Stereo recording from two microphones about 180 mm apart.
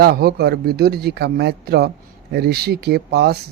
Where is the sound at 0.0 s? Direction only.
60° right (ahead or behind).